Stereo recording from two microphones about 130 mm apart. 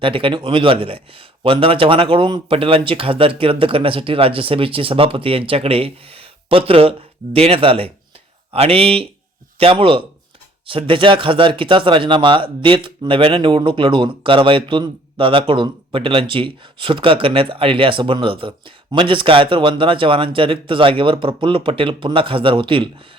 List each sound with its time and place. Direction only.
0.0 s speech: 45° right (ahead or behind)